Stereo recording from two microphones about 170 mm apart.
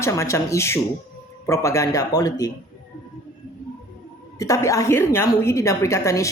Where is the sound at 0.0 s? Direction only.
15° left (ahead or behind).